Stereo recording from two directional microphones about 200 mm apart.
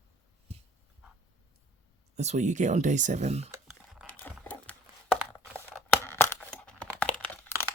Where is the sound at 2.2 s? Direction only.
35° right (ahead or behind).